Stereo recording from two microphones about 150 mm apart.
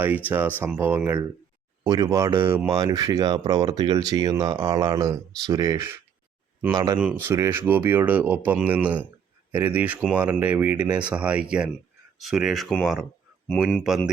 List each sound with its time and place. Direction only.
0.3 s speech: 10° right (ahead or behind)
6.7 s speech: 30° right (ahead or behind)
7.0 s speech: 10° right (ahead or behind)